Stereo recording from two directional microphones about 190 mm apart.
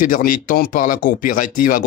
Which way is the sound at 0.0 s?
45° left (ahead or behind).